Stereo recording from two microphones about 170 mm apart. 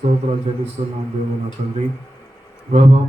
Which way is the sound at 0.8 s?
45° right (ahead or behind).